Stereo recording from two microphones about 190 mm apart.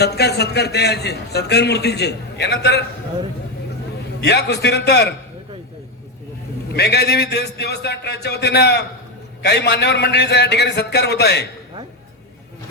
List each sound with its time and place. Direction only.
0.0 s a man's voice: 60° left (ahead or behind)
4.2 s a man's voice: 60° left (ahead or behind)
6.7 s a man's voice: 60° left (ahead or behind)